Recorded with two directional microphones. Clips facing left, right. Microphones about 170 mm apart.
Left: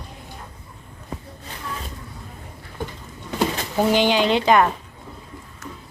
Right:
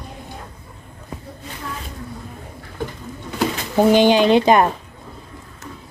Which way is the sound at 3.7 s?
15° right (ahead or behind).